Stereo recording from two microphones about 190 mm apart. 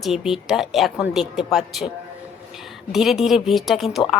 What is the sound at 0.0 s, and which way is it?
A woman's voice, centre (ahead or behind).